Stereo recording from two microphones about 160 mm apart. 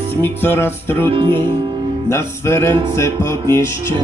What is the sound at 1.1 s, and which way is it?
Speech, 30° right (ahead or behind).